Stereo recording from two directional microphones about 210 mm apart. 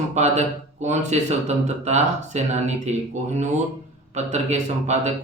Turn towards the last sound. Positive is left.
turn(degrees=-35)  # may be behind; listen again after turning